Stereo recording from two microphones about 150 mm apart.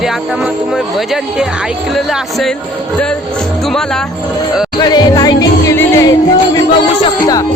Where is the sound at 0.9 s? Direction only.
Centre (ahead or behind).